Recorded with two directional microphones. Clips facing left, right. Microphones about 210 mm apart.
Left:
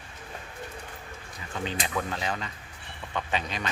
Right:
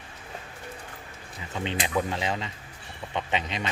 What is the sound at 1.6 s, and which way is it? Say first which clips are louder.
Speech: right 3 dB; 25° right (ahead or behind).